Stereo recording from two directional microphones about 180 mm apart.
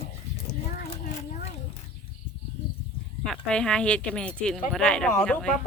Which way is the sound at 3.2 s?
5° left (ahead or behind).